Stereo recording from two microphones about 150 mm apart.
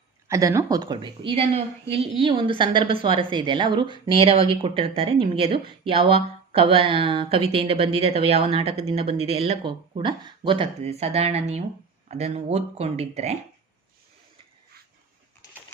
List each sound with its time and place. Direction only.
0.3 s a woman's voice: 20° right (ahead or behind); by 13.3 s 45° right (ahead or behind)